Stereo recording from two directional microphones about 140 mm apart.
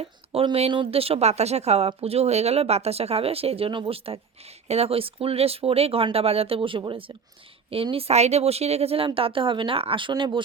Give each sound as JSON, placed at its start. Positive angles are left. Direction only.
{"t": 0.5, "sound": "speech", "side_deg": -40}